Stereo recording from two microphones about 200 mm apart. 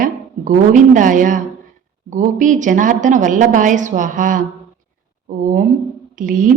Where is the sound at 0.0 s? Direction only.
40° right (ahead or behind).